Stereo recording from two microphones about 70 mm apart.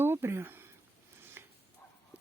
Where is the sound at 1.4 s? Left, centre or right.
Right.